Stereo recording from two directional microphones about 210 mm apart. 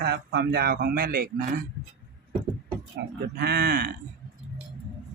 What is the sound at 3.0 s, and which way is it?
Speech, 55° right (ahead or behind).